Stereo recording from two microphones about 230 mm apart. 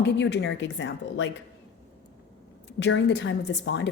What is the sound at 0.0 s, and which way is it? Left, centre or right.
A woman's voice, left.